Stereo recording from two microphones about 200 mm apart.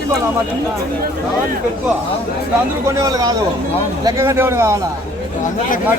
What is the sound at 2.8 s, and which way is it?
Speech, 15° right (ahead or behind).